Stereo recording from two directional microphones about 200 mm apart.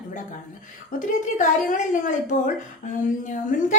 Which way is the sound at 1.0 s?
40° left (ahead or behind).